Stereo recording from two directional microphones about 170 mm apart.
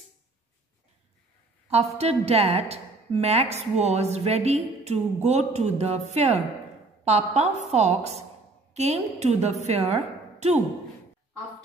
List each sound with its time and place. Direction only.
2.0 s a woman's voice: 35° right (ahead or behind)